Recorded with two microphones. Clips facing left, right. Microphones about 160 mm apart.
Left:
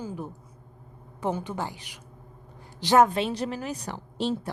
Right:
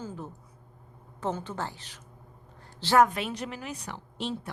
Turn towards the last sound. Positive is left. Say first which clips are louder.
# left 6 dB
turn(degrees=35)  # may be behind; listen again after turning